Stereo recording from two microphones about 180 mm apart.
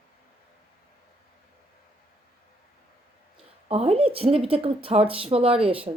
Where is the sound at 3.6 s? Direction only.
35° right (ahead or behind).